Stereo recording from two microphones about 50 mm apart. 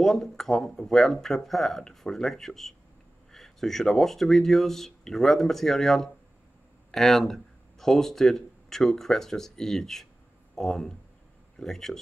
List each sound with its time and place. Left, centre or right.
0.0 s speech: centre